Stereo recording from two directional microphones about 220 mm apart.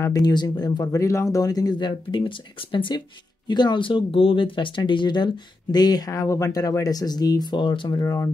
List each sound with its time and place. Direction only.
0.0 s speech: 15° left (ahead or behind)